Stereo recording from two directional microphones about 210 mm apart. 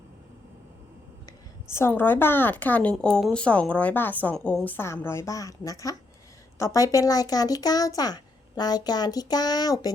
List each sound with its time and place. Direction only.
1.7 s speech: 10° left (ahead or behind)